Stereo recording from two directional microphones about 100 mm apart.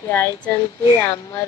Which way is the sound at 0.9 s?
25° left (ahead or behind).